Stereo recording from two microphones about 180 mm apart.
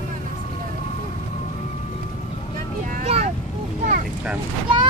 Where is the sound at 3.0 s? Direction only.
35° right (ahead or behind).